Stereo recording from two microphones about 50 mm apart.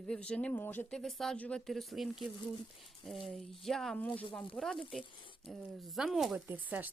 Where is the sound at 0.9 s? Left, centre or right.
Centre.